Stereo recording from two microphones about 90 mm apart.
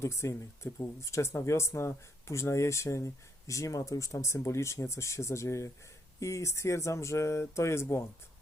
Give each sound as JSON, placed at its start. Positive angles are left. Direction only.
{"t": 0.0, "sound": "speech", "side_deg": 30}